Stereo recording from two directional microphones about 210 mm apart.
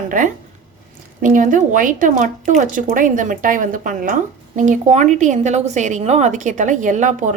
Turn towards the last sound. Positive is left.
turn(degrees=-35)  # may be behind; listen again after turning